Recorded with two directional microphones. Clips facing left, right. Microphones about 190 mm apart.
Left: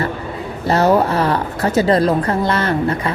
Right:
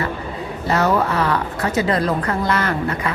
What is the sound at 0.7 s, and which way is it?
A woman's voice, 30° left (ahead or behind).